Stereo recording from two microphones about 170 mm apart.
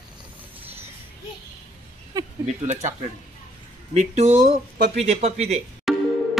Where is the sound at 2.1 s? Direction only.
20° right (ahead or behind).